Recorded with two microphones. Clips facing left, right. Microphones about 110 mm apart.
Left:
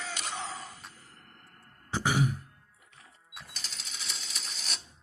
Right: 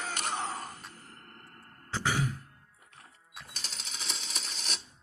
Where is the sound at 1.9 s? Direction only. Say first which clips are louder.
Left 3 dB; 15° left (ahead or behind).